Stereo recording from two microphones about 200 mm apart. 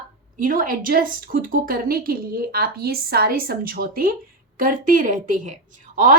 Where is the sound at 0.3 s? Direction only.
40° right (ahead or behind).